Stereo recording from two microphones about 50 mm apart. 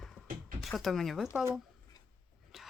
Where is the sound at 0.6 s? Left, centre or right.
Centre.